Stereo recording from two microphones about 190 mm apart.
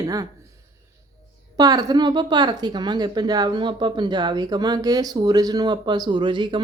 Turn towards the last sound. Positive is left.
turn(degrees=-25)  # may be behind; listen again after turning